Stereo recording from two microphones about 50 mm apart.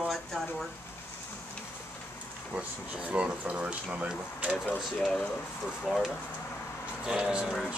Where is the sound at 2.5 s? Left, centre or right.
Right.